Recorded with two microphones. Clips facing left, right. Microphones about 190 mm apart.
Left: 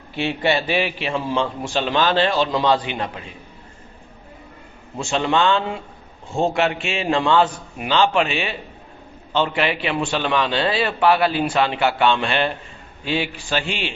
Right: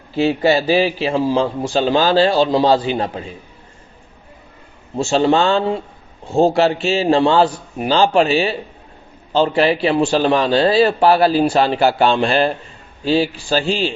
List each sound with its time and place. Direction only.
0.2 s a man's voice: 35° right (ahead or behind)
5.0 s a man's voice: 35° right (ahead or behind)